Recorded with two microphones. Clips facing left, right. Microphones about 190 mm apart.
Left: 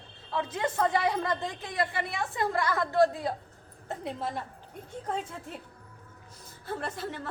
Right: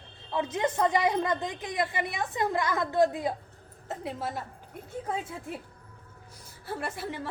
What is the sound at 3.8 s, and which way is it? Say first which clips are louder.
A woman's voice: even; centre (ahead or behind).